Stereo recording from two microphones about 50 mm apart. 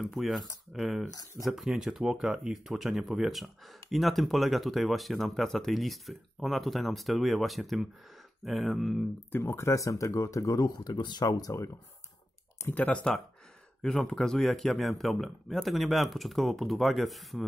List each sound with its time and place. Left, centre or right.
0.1 s speech: centre
9.4 s speech: left
12.7 s speech: left
13.8 s speech: centre